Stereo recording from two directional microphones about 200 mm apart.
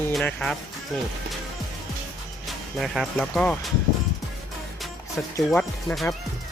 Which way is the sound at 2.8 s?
Centre (ahead or behind).